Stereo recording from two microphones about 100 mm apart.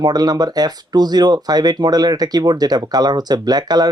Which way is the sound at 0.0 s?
40° right (ahead or behind).